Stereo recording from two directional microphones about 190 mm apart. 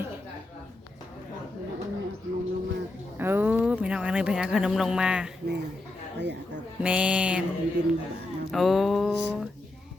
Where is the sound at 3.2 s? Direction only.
10° right (ahead or behind).